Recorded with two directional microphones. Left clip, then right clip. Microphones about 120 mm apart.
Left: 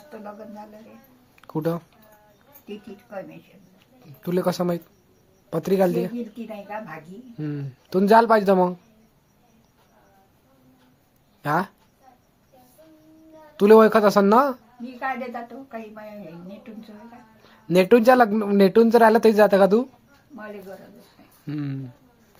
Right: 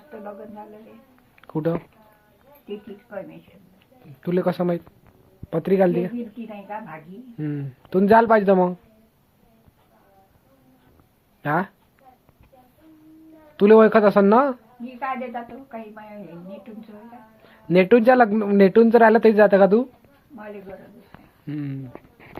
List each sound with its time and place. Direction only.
0.1 s a sound: 35° left (ahead or behind)
1.4 s a sound: 15° left (ahead or behind)
2.6 s speech: 40° left (ahead or behind)
4.2 s speech: 10° left (ahead or behind)
7.3 s speech: 10° left (ahead or behind)
11.4 s speech: 10° left (ahead or behind)
13.6 s speech: 10° left (ahead or behind)
14.9 s a woman's voice: 45° left (ahead or behind)
17.4 s speech: 10° left (ahead or behind)
21.4 s speech: 30° left (ahead or behind)